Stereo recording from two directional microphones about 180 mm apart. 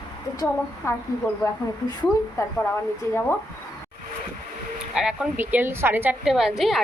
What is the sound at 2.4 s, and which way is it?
Speech, 15° left (ahead or behind).